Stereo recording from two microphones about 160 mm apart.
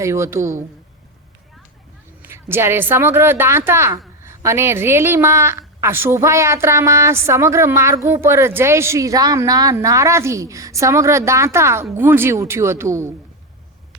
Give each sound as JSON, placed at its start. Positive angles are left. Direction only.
{"t": 0.0, "sound": "a woman's voice", "side_deg": -20}
{"t": 2.2, "sound": "a woman's voice", "side_deg": -15}